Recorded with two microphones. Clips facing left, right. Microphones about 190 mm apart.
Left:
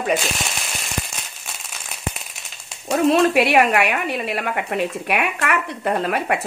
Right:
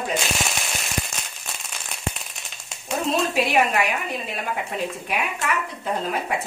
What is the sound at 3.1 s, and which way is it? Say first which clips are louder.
Speech: left 6 dB; 70° left (ahead or behind).